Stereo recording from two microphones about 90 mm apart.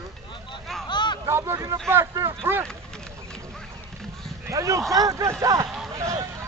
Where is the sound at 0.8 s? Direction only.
60° left (ahead or behind).